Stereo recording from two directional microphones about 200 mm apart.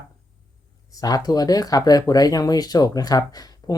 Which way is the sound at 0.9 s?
20° left (ahead or behind).